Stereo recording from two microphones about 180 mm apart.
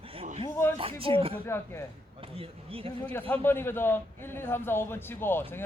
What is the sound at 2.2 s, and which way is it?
Speech, 30° right (ahead or behind).